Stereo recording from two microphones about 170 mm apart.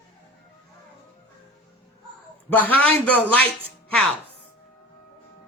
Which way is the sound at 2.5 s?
10° left (ahead or behind).